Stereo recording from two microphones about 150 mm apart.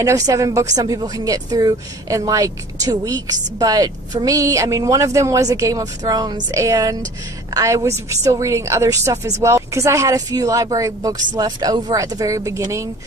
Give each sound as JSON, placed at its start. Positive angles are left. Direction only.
{"t": 0.0, "sound": "speech", "side_deg": -20}